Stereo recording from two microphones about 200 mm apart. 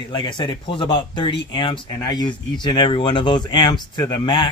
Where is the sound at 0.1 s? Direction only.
25° left (ahead or behind).